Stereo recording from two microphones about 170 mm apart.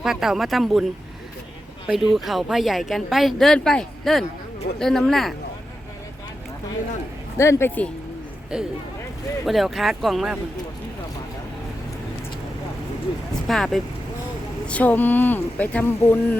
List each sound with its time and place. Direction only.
0.0 s speech: centre (ahead or behind)
1.9 s speech: centre (ahead or behind)
7.3 s speech: 15° left (ahead or behind)
8.5 s speech: 5° right (ahead or behind)
13.5 s speech: centre (ahead or behind)